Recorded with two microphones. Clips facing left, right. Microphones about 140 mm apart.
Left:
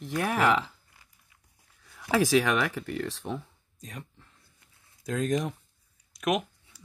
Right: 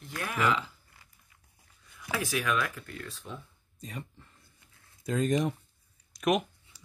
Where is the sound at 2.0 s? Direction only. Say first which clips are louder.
Left 9 dB; 90° left.